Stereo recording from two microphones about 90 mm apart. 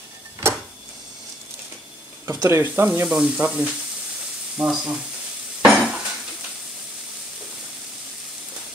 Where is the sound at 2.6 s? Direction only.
25° right (ahead or behind).